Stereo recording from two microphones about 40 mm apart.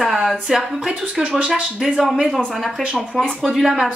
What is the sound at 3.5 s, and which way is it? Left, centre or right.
Speech, centre.